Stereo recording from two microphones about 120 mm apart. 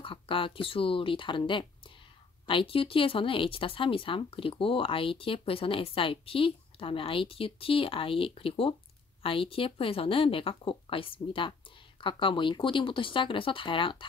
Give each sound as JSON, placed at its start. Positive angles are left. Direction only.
{"t": 0.0, "sound": "speech", "side_deg": 45}